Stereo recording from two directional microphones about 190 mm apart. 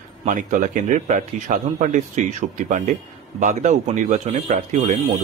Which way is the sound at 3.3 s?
40° right (ahead or behind).